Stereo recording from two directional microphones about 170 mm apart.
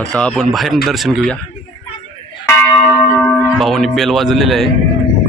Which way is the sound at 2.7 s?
20° left (ahead or behind).